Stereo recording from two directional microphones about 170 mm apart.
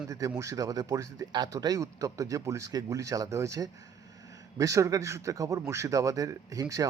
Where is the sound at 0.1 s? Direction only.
20° right (ahead or behind).